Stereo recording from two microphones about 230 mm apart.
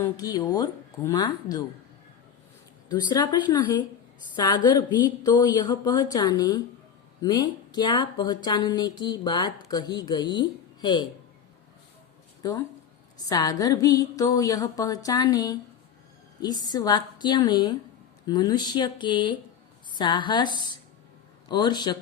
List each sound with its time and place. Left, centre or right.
0.0 s speech: centre
2.9 s speech: centre
12.4 s speech: centre